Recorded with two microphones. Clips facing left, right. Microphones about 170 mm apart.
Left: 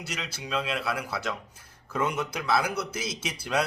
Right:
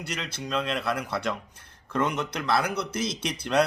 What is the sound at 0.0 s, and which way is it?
A man's voice, 5° left (ahead or behind).